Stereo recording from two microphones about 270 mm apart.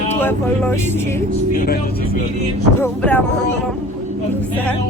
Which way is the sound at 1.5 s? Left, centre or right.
Left.